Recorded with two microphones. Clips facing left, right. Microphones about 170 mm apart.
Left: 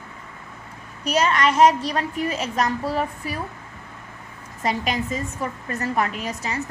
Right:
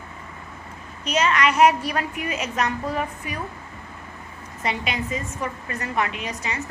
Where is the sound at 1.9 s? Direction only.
35° left (ahead or behind).